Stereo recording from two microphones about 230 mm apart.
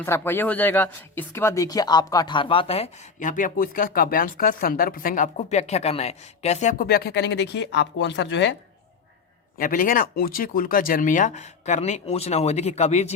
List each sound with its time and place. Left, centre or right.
0.0 s speech: centre; by 8.5 s left
9.6 s speech: left